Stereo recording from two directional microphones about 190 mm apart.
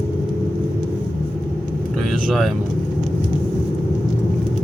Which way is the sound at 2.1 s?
Centre (ahead or behind).